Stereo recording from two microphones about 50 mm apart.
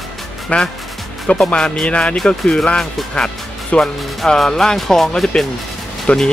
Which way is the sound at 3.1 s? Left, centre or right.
Centre.